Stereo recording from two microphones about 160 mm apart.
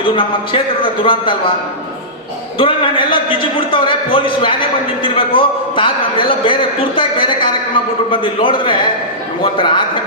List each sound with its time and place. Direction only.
0.0 s a man's voice: 35° left (ahead or behind)
2.6 s a man's voice: 35° left (ahead or behind)